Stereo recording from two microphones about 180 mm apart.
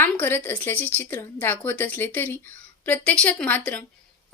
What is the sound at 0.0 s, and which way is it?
A woman's voice, 10° left (ahead or behind).